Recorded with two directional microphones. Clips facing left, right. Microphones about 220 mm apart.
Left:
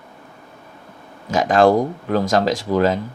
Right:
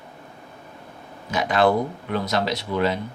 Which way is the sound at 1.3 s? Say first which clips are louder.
Left 5 dB; 45° left (ahead or behind).